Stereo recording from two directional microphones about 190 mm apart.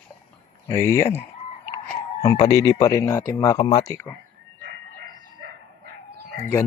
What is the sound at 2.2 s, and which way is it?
Speech, 15° left (ahead or behind).